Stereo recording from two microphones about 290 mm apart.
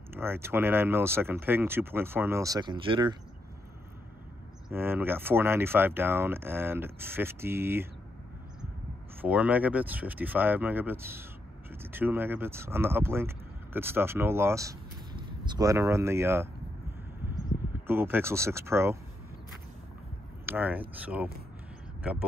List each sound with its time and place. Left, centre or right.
0.1 s speech: centre
4.7 s speech: centre
9.2 s speech: centre
17.8 s speech: centre
20.4 s speech: centre